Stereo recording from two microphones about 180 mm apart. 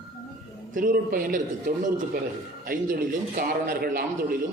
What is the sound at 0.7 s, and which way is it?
A man's voice, 50° right (ahead or behind).